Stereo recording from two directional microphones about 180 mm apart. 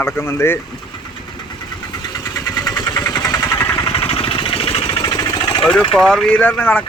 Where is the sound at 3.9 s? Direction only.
30° left (ahead or behind).